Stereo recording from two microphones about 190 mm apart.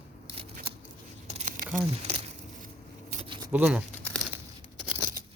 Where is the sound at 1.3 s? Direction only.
40° right (ahead or behind).